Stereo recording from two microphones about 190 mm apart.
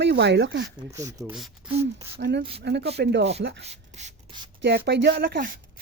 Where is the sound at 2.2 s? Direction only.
65° right (ahead or behind).